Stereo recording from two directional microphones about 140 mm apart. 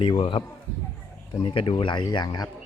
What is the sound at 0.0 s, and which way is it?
Speech, 40° left (ahead or behind).